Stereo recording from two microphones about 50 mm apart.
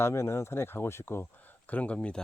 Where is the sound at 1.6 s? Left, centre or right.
Left.